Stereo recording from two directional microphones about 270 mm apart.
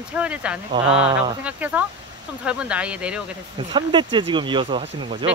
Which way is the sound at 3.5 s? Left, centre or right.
Centre.